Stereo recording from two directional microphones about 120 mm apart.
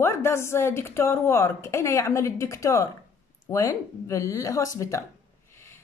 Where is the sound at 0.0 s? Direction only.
20° left (ahead or behind).